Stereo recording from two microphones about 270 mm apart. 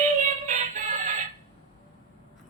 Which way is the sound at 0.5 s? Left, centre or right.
Right.